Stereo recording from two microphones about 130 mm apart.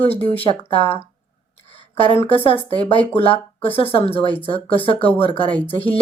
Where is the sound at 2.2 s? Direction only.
45° left (ahead or behind).